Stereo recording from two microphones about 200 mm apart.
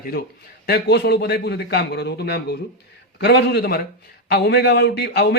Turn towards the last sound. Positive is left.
turn(degrees=55)  # may be behind; listen again after turning